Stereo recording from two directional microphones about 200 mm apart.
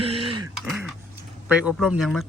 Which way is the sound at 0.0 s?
30° right (ahead or behind).